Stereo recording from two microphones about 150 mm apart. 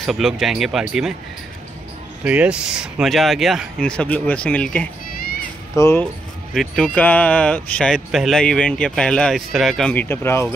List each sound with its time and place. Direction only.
0.0 s speech: centre (ahead or behind)
2.2 s speech: 10° right (ahead or behind); by 6.0 s 15° left (ahead or behind)
6.5 s speech: centre (ahead or behind)